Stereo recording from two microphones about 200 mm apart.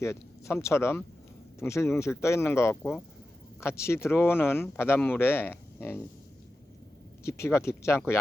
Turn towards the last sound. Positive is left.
turn(degrees=15)  # may be behind; listen again after turning